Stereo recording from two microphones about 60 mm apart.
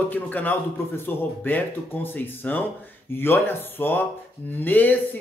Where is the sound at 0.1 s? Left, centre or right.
Left.